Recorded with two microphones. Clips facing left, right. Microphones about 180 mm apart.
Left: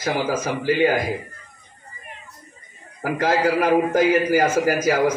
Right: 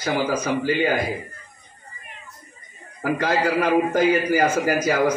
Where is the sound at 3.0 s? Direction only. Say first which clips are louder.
Left 1 dB; 45° left (ahead or behind).